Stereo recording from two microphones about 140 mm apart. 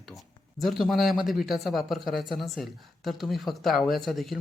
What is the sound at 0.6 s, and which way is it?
Speech, centre (ahead or behind).